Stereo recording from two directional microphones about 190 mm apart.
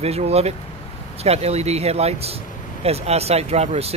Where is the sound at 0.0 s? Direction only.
35° right (ahead or behind).